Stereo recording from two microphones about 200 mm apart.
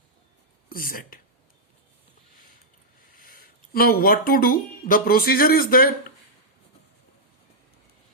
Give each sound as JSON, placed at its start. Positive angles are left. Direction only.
{"t": 0.7, "sound": "speech", "side_deg": 45}
{"t": 3.1, "sound": "speech", "side_deg": 45}